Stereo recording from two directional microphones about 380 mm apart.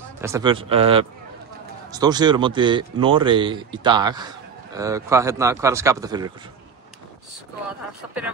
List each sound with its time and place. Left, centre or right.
0.2 s speech: centre
7.6 s speech: centre